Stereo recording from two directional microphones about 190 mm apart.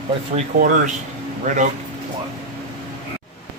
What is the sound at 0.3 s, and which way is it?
Speech, 30° right (ahead or behind).